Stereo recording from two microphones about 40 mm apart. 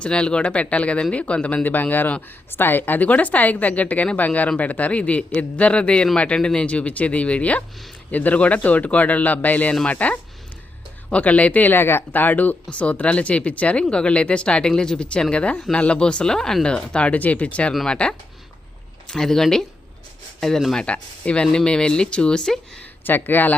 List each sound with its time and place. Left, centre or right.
0.0 s speech: left
1.6 s speech: left
2.5 s a woman's voice: left
11.7 s speech: left
12.1 s a woman's voice: left; by 16.6 s centre
16.6 s a woman's voice: left
19.0 s speech: centre
20.8 s speech: left
21.4 s speech: centre
23.0 s speech: left